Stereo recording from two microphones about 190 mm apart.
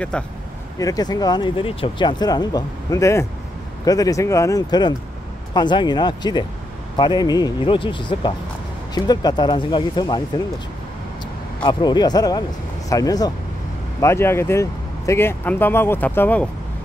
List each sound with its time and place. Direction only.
0.1 s speech: 5° left (ahead or behind)
0.7 s speech: 20° left (ahead or behind)
11.6 s speech: 20° left (ahead or behind)